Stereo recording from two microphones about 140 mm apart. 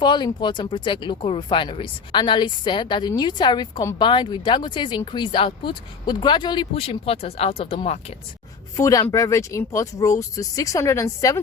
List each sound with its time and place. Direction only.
0.0 s speech: 35° left (ahead or behind)
8.7 s speech: 25° left (ahead or behind)